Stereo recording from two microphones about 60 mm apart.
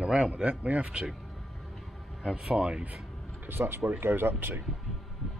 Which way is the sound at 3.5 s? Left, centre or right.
Right.